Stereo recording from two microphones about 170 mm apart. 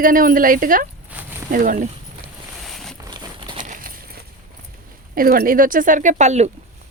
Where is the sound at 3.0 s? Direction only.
25° right (ahead or behind).